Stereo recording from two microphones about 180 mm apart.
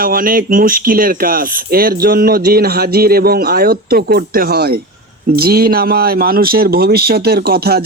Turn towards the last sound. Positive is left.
turn(degrees=-60)  # may be behind; listen again after turning